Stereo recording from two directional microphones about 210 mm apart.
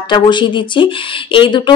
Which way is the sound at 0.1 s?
20° left (ahead or behind).